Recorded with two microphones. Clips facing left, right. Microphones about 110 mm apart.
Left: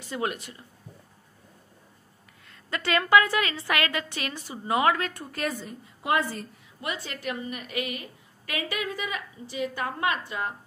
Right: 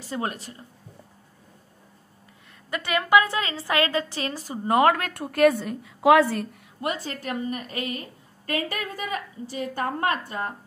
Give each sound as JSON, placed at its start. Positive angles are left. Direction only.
{"t": 0.1, "sound": "a woman's voice", "side_deg": -35}
{"t": 2.7, "sound": "a woman's voice", "side_deg": -20}
{"t": 6.8, "sound": "a woman's voice", "side_deg": -40}